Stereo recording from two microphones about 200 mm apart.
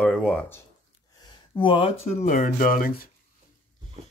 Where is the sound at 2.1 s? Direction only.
35° left (ahead or behind).